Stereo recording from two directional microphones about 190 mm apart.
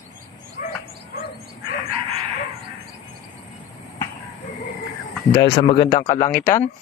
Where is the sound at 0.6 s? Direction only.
45° left (ahead or behind).